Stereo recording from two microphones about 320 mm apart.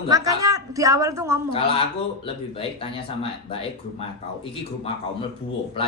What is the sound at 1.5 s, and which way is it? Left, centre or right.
Speech, centre.